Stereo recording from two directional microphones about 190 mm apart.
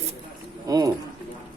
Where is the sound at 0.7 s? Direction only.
20° right (ahead or behind).